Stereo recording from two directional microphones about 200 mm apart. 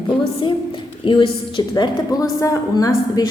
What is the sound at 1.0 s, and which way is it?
A woman's voice, 25° left (ahead or behind).